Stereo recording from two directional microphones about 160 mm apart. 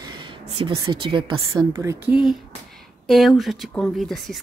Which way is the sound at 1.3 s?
20° right (ahead or behind).